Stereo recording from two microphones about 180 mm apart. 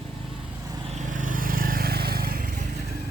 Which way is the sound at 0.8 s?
40° right (ahead or behind).